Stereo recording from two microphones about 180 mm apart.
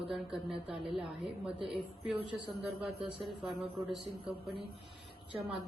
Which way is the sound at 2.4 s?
Centre (ahead or behind).